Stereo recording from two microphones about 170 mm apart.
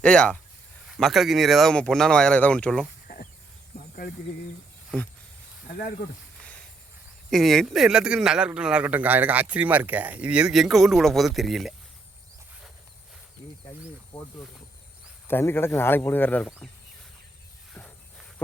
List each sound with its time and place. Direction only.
0.0 s speech: 5° left (ahead or behind)
3.1 s a sound: 75° left (ahead or behind)
7.3 s speech: centre (ahead or behind)
15.3 s speech: 15° left (ahead or behind)